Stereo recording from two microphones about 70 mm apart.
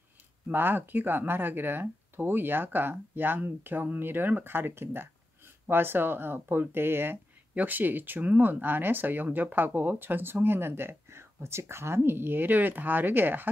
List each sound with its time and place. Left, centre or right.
0.5 s speech: right